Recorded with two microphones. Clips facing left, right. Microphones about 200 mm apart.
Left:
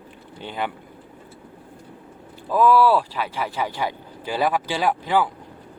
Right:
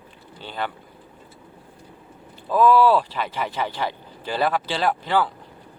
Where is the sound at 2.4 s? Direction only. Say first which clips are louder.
Even; 10° left (ahead or behind).